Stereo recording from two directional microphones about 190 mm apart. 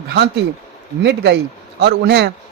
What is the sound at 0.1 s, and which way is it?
Speech, 60° right (ahead or behind).